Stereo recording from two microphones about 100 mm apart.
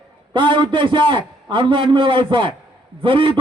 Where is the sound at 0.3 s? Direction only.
55° right (ahead or behind).